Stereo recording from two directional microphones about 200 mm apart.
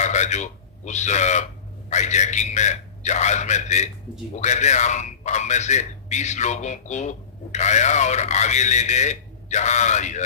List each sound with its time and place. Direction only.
0.0 s a man's voice: 35° left (ahead or behind)